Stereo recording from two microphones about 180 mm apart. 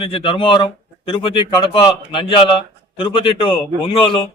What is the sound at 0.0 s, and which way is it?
Speech, 30° left (ahead or behind).